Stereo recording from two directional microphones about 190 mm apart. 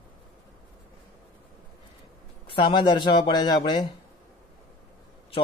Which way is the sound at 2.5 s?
25° left (ahead or behind).